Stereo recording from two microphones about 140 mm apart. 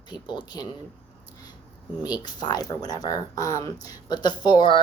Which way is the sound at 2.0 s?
30° left (ahead or behind).